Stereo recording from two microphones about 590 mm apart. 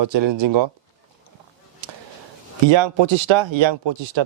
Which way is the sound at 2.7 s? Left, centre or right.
Right.